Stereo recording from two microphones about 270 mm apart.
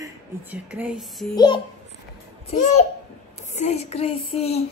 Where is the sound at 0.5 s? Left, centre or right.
Centre.